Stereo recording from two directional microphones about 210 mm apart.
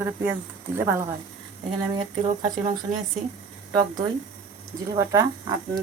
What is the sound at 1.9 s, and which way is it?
Speech, 25° right (ahead or behind).